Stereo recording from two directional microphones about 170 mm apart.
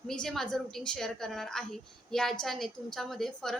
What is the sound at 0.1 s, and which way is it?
A woman's voice, 5° left (ahead or behind).